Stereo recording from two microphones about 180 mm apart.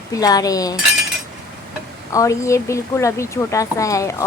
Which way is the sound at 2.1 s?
15° left (ahead or behind).